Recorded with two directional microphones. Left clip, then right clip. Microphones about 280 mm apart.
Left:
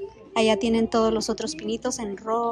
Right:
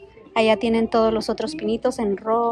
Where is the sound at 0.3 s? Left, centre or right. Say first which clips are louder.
Right 3 dB; centre.